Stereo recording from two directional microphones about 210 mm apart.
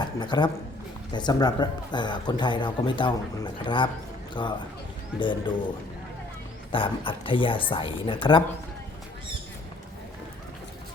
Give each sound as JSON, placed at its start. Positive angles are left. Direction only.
{"t": 0.2, "sound": "a man's voice", "side_deg": 20}
{"t": 6.7, "sound": "a man's voice", "side_deg": 25}